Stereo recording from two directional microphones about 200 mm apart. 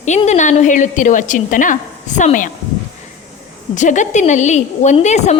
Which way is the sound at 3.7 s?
35° left (ahead or behind).